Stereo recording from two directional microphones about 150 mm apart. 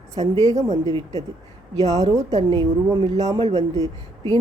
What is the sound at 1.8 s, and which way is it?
Speech, 45° right (ahead or behind).